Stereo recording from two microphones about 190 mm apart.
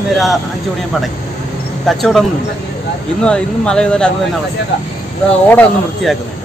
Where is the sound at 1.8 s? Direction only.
Centre (ahead or behind).